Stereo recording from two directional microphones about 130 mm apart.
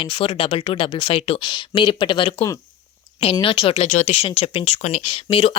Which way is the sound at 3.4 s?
40° left (ahead or behind).